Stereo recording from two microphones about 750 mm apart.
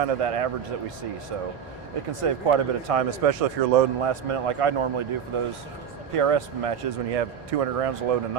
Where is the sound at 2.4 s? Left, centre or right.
Right.